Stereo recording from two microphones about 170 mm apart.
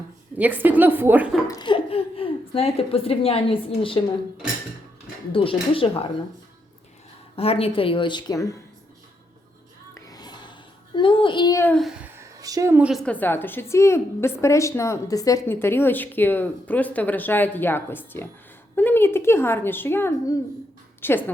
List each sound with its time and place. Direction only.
0.3 s a woman's voice: 10° right (ahead or behind)
1.5 s a woman's voice: 25° left (ahead or behind)
5.3 s a woman's voice: 30° left (ahead or behind)
7.3 s a woman's voice: 35° left (ahead or behind)
9.9 s music: 20° left (ahead or behind)
10.9 s child singing: 30° left (ahead or behind)
11.6 s a child's voice: 5° left (ahead or behind)
12.0 s a sound: 15° right (ahead or behind)
12.9 s a woman's voice: 5° left (ahead or behind)